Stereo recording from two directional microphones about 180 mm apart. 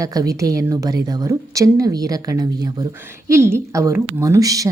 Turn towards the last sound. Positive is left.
turn(degrees=-20)  # may be behind; listen again after turning